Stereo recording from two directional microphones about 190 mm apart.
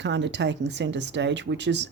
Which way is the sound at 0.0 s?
65° right (ahead or behind).